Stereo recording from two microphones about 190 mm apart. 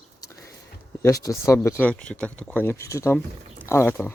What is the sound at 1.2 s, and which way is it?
Speech, 15° left (ahead or behind).